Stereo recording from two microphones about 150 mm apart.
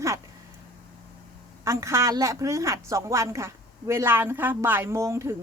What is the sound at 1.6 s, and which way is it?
A woman's voice, 20° right (ahead or behind).